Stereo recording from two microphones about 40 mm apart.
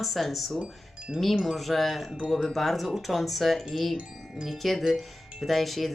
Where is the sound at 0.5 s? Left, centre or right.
Right.